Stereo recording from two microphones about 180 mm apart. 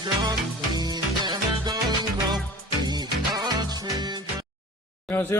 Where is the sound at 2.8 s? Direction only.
25° right (ahead or behind).